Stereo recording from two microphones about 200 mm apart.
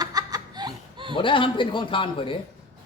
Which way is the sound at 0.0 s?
20° right (ahead or behind).